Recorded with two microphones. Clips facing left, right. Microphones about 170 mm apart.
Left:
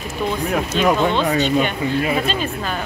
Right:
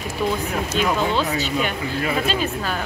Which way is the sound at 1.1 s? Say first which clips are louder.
Left 5 dB; 5° right (ahead or behind).